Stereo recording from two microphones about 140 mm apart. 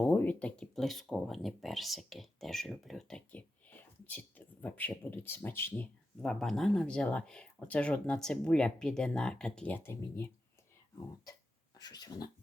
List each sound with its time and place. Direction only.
0.0 s speech: 10° left (ahead or behind)
6.2 s speech: 5° left (ahead or behind)
11.8 s speech: 30° left (ahead or behind)